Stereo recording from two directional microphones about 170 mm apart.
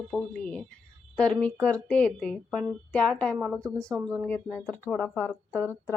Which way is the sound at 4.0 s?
15° right (ahead or behind).